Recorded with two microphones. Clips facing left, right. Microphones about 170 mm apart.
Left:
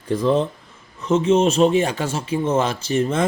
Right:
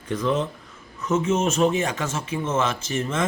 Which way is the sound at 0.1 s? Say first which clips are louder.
Left 5 dB; 30° left (ahead or behind).